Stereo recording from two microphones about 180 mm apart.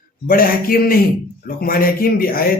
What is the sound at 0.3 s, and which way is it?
Speech, 55° left (ahead or behind).